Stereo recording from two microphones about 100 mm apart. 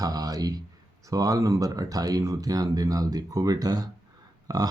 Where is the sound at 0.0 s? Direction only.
40° right (ahead or behind).